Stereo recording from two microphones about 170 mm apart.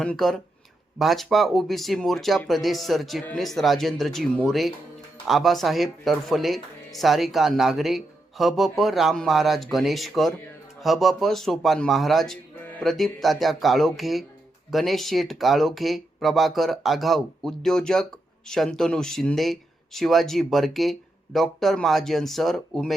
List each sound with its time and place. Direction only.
0.0 s speech: 5° left (ahead or behind)